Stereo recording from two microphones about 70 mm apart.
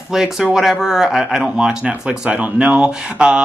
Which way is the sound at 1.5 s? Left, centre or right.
Centre.